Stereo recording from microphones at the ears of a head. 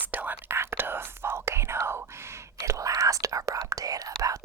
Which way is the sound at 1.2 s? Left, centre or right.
Right.